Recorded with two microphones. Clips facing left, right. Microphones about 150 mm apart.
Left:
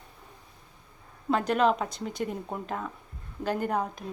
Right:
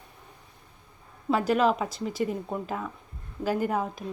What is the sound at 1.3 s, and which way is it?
A woman's voice, 5° right (ahead or behind).